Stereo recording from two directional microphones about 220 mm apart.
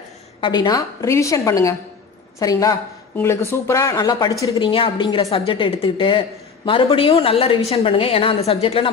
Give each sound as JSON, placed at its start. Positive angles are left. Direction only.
{"t": 0.4, "sound": "a woman's voice", "side_deg": 20}